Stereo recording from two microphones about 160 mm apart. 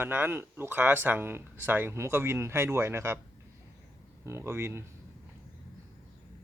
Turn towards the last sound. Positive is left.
turn(degrees=-15)  # may be behind; listen again after turning